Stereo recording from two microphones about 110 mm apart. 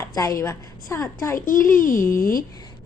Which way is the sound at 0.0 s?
35° left (ahead or behind).